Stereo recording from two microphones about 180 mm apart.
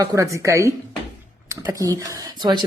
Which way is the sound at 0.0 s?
15° right (ahead or behind).